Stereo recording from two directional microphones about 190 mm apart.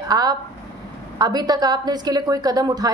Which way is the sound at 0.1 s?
20° right (ahead or behind).